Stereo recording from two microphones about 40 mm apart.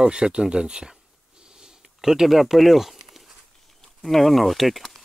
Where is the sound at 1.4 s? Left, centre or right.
Centre.